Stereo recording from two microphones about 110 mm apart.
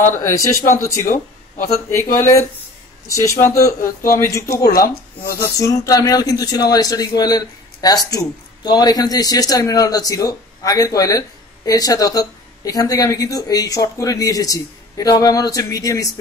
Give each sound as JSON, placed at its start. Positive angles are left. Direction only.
{"t": 0.2, "sound": "speech", "side_deg": 30}